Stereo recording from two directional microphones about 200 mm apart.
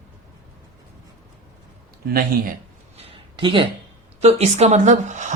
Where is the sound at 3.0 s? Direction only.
25° right (ahead or behind).